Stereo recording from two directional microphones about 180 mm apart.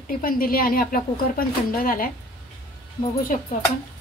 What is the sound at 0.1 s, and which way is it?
Speech, 50° left (ahead or behind).